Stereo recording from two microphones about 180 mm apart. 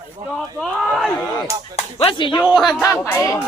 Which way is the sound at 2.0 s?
30° left (ahead or behind).